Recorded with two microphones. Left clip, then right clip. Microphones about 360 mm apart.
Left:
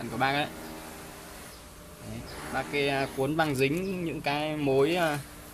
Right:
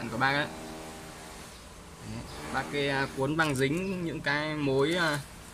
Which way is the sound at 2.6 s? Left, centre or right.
Centre.